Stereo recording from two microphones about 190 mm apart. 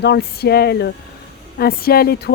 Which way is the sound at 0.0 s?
60° left (ahead or behind).